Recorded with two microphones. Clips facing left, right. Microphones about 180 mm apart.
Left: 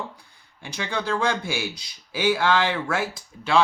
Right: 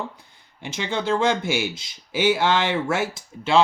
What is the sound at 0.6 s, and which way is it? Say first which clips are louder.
Speech: right 3 dB; 20° right (ahead or behind).